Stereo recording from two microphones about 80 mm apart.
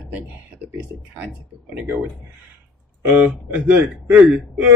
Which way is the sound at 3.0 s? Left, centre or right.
Right.